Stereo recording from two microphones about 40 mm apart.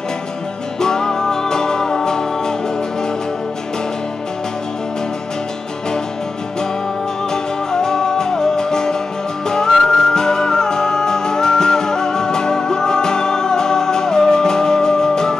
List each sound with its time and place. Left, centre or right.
0.7 s music: centre
7.7 s music: centre